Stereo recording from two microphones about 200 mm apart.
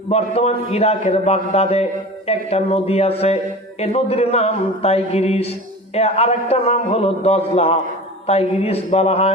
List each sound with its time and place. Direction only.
0.1 s a man's voice: 30° left (ahead or behind)